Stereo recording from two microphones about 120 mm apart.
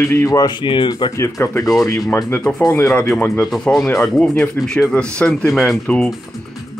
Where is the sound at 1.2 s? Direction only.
25° left (ahead or behind).